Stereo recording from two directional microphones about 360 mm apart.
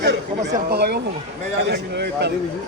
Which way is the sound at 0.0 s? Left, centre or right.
Right.